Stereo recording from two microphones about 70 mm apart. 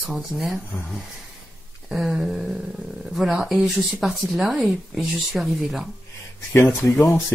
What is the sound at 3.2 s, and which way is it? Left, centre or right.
Speech, centre.